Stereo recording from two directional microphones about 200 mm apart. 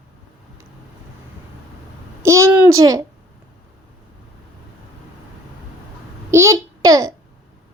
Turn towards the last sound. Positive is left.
turn(degrees=-15)  # may be behind; listen again after turning